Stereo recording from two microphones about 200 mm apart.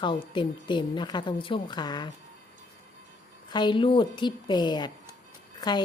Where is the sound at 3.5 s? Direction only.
20° left (ahead or behind).